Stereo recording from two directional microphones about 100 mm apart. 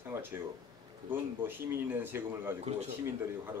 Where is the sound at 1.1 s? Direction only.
20° right (ahead or behind).